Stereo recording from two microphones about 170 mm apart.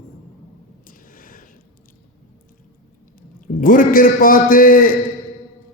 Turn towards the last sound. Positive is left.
turn(degrees=55)  # may be behind; listen again after turning